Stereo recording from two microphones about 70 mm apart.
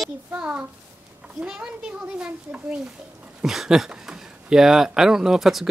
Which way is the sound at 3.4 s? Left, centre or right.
Centre.